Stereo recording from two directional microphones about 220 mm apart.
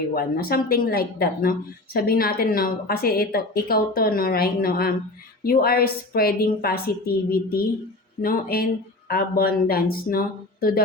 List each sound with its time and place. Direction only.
0.1 s speech: 45° left (ahead or behind)